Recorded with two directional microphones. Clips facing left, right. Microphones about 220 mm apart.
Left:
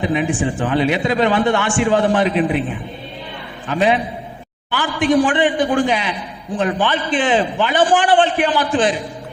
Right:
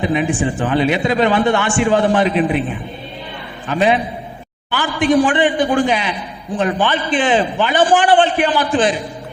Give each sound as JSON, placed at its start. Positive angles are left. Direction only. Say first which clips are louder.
{"t": 0.0, "sound": "a man's voice", "louder": "right 1 dB", "side_deg": -15}
{"t": 3.7, "sound": "a man's voice", "louder": "right 1 dB", "side_deg": -15}